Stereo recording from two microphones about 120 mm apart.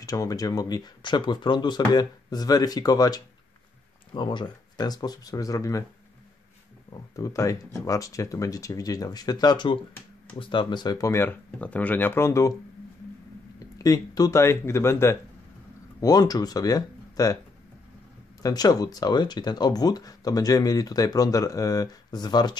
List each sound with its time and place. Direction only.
0.0 s speech: 30° left (ahead or behind)
6.9 s speech: 30° left (ahead or behind)
13.6 s speech: 30° left (ahead or behind)
16.0 s speech: 30° left (ahead or behind)
18.4 s speech: 35° left (ahead or behind)